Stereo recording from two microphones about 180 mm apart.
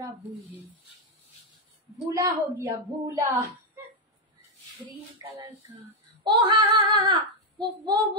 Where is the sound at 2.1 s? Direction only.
15° right (ahead or behind).